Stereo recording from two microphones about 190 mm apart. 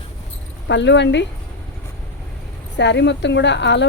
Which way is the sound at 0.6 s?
70° left (ahead or behind).